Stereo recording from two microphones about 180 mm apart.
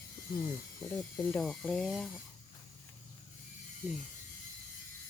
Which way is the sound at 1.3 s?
Centre (ahead or behind).